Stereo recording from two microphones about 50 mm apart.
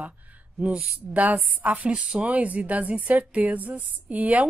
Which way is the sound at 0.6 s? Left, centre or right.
Right.